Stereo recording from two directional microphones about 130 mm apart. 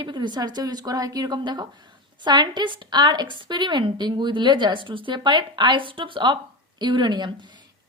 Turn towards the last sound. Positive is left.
turn(degrees=-35)  # may be behind; listen again after turning